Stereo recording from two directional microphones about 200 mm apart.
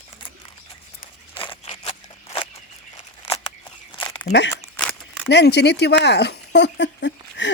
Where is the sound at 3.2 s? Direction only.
25° left (ahead or behind).